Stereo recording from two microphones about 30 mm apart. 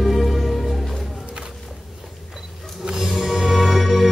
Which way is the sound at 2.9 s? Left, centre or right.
Centre.